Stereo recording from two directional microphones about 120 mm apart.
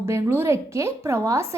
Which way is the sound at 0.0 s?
20° right (ahead or behind).